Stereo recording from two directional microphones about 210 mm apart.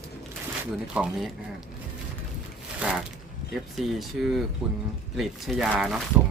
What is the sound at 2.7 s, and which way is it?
Speech, 5° right (ahead or behind).